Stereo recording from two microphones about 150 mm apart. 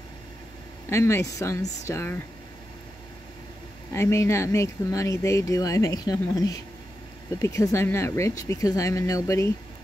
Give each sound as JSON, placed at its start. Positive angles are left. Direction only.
{"t": 0.8, "sound": "speech", "side_deg": 15}
{"t": 3.9, "sound": "speech", "side_deg": 20}